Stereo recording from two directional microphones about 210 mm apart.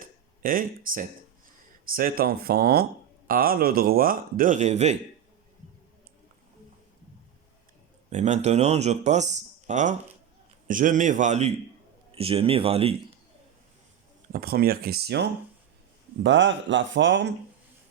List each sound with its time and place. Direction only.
0.0 s a sound: 40° right (ahead or behind)
1.9 s a man's voice: 45° right (ahead or behind)
8.1 s a man's voice: 35° right (ahead or behind)
14.3 s a man's voice: 45° right (ahead or behind)
16.2 s speech: 60° right (ahead or behind)